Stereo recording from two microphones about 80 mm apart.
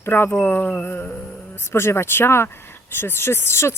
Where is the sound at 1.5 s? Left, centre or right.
Left.